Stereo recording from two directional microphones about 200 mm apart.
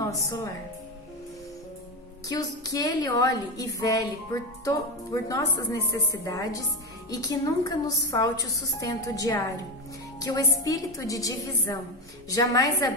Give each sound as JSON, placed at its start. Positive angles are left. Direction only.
{"t": 2.2, "sound": "a woman's voice", "side_deg": 20}